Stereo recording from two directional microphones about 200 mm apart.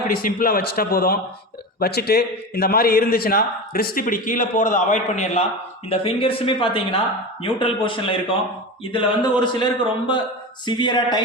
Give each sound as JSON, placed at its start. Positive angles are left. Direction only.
{"t": 0.1, "sound": "a man's voice", "side_deg": 45}